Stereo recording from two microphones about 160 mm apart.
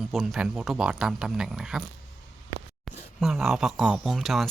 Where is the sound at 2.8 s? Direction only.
Centre (ahead or behind).